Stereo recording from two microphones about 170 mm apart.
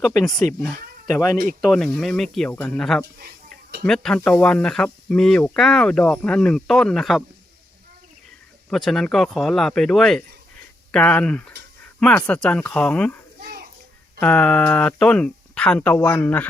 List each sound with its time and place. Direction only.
0.0 s speech: 15° left (ahead or behind)
1.6 s speech: centre (ahead or behind)
3.2 s a sound: 65° right (ahead or behind)
3.8 s speech: 5° left (ahead or behind)
8.7 s speech: centre (ahead or behind)
14.2 s speech: 5° left (ahead or behind)